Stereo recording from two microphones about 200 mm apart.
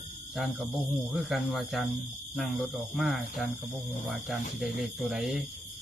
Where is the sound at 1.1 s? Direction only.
Centre (ahead or behind).